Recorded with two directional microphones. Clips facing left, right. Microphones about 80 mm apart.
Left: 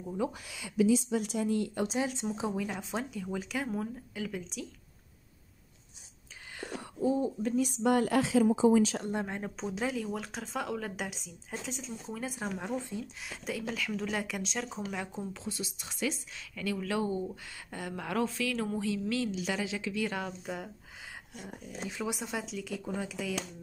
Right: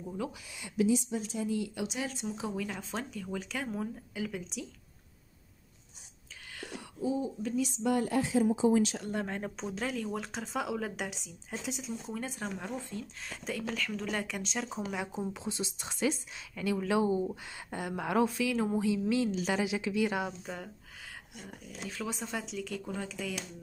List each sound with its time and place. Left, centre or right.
1.1 s speech: left
2.0 s speech: left; by 4.6 s centre
6.5 s speech: left
9.2 s speech: centre
13.2 s speech: centre
15.4 s speech: right
19.3 s a woman's voice: right
19.6 s a woman's voice: centre
20.4 s speech: centre
21.8 s speech: centre